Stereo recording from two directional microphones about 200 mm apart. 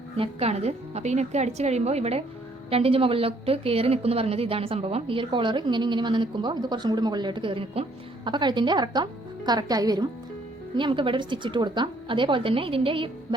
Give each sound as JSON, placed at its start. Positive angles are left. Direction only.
{"t": 0.2, "sound": "a woman's voice", "side_deg": -30}